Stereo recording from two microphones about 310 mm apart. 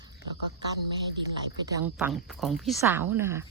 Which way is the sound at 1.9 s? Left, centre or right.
Centre.